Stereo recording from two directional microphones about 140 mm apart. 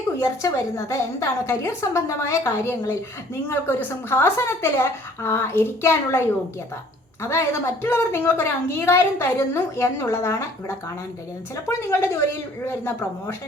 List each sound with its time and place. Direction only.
0.2 s a woman's voice: 20° left (ahead or behind)